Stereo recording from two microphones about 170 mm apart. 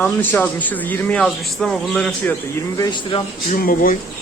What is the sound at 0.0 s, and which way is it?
Speech, 10° left (ahead or behind).